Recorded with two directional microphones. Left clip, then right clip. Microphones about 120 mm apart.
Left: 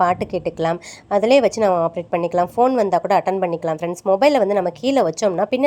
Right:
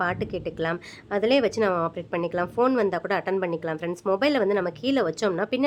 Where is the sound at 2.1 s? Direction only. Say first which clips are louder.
Left 8 dB; 30° left (ahead or behind).